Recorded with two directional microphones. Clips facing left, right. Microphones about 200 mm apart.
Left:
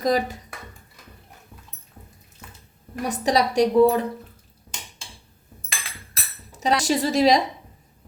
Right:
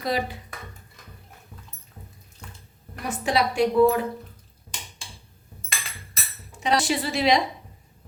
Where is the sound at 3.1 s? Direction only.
40° left (ahead or behind).